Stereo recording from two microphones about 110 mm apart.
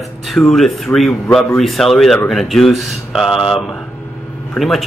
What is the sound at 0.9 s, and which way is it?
Speech, 15° left (ahead or behind).